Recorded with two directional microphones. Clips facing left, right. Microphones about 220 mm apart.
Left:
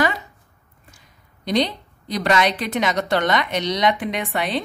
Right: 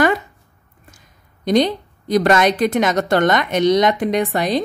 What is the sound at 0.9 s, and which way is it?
A woman's voice, 45° right (ahead or behind).